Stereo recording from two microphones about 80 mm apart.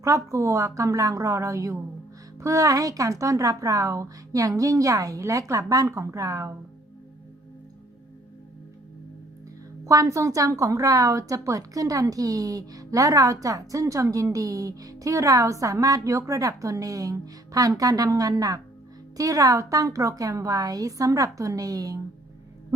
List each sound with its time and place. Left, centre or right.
0.0 s a woman's voice: right
9.8 s speech: right